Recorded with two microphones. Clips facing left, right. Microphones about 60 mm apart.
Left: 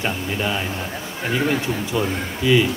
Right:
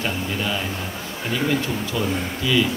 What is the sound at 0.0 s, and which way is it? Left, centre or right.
A man's voice, left.